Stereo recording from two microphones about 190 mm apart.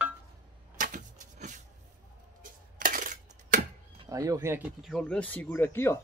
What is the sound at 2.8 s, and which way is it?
Coin, 45° right (ahead or behind).